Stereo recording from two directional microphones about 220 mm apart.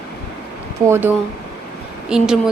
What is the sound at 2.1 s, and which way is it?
Speech, 5° right (ahead or behind).